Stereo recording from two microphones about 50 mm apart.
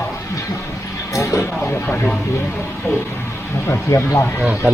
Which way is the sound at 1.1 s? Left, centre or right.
Left.